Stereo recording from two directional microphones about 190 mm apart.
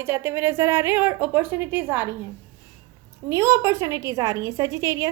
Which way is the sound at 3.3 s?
15° right (ahead or behind).